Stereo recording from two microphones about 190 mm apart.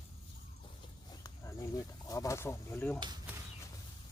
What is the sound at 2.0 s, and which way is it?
Speech, 15° left (ahead or behind).